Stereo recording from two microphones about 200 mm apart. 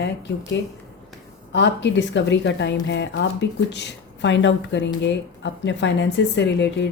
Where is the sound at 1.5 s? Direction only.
65° left (ahead or behind).